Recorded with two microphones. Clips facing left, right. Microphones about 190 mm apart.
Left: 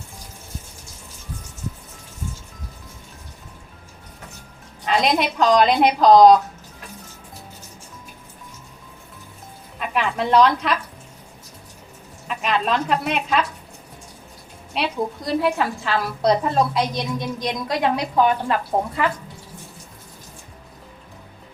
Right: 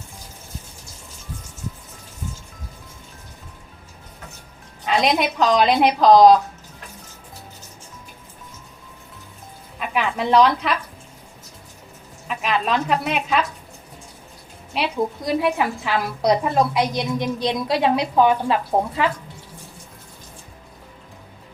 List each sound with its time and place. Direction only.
4.9 s a woman's voice: centre (ahead or behind)
9.7 s speech: centre (ahead or behind)
12.3 s a woman's voice: centre (ahead or behind)
14.7 s a woman's voice: centre (ahead or behind)
15.2 s a woman's voice: 15° right (ahead or behind)
18.7 s speech: 10° right (ahead or behind)